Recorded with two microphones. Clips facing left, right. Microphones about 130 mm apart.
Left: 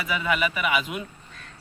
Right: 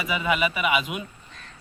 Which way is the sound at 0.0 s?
15° right (ahead or behind).